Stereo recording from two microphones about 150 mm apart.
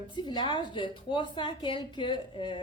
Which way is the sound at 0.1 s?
30° left (ahead or behind).